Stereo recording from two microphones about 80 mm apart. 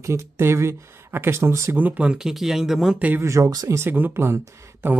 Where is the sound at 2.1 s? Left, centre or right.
Centre.